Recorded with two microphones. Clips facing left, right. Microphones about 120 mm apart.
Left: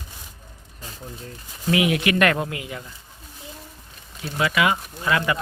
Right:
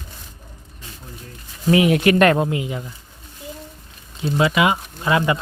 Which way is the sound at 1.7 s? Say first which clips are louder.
Right 5 dB; 35° right (ahead or behind).